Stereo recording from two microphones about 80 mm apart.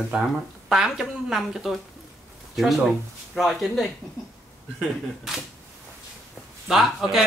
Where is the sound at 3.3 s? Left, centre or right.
Centre.